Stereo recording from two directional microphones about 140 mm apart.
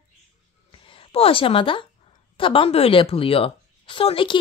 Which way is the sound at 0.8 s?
40° left (ahead or behind).